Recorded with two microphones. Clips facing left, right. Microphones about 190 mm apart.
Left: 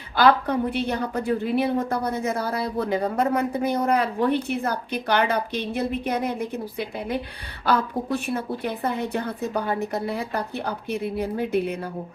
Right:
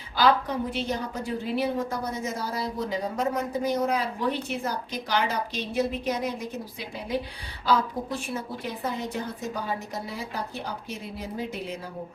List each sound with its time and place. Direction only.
0.2 s a woman's voice: 60° left (ahead or behind)